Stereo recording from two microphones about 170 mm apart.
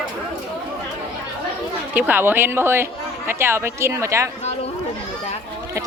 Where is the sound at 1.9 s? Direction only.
10° right (ahead or behind).